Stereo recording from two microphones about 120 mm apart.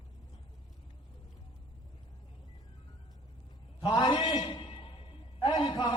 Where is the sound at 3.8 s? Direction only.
40° left (ahead or behind).